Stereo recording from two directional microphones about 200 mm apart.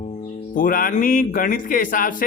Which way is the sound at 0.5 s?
45° left (ahead or behind).